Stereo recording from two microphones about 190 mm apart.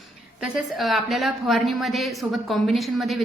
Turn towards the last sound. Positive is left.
turn(degrees=0)  # may be behind; listen again after turning